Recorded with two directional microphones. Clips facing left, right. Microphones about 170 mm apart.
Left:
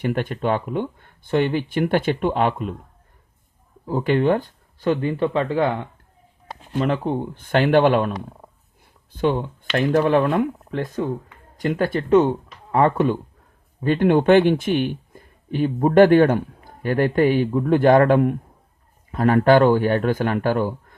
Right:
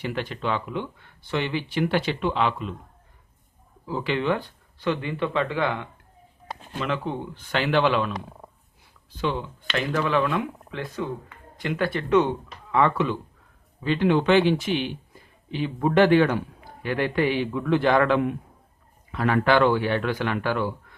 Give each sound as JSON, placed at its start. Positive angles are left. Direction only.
{"t": 0.0, "sound": "speech", "side_deg": 50}
{"t": 3.8, "sound": "speech", "side_deg": 50}
{"t": 9.1, "sound": "speech", "side_deg": 50}